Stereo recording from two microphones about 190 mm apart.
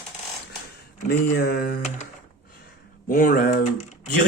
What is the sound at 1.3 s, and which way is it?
Speech, 50° left (ahead or behind).